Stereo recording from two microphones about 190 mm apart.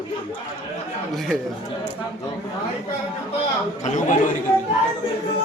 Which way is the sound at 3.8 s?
40° left (ahead or behind).